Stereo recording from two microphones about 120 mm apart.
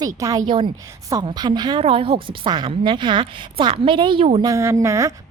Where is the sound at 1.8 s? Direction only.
50° right (ahead or behind).